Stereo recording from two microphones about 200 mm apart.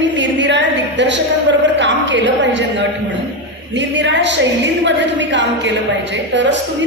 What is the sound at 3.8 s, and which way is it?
A woman's voice, 60° right (ahead or behind).